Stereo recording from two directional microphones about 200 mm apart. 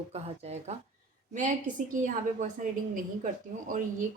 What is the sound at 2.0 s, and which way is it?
Speech, 40° right (ahead or behind).